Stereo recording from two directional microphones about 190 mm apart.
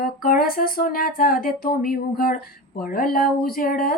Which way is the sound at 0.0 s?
50° left (ahead or behind).